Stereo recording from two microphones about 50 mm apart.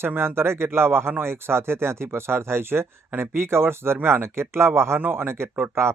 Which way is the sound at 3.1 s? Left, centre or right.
Right.